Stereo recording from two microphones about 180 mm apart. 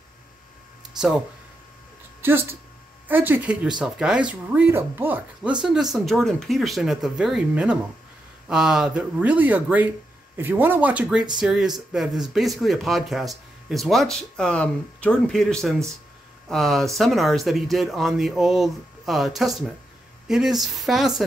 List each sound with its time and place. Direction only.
0.9 s speech: 5° right (ahead or behind)
2.2 s speech: 15° right (ahead or behind)